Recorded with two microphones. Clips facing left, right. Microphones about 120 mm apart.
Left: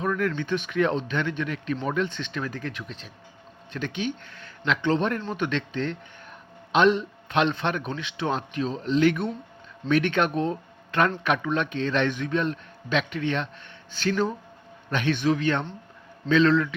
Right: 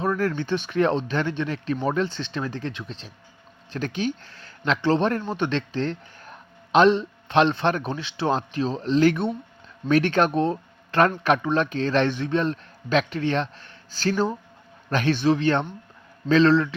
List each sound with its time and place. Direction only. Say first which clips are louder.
0.0 s speech: right 2 dB; 35° right (ahead or behind)